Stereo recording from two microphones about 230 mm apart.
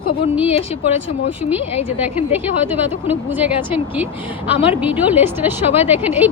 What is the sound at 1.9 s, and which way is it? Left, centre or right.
A woman's voice, centre.